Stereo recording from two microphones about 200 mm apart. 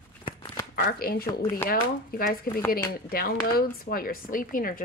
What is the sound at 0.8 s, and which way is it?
Speech, 50° left (ahead or behind).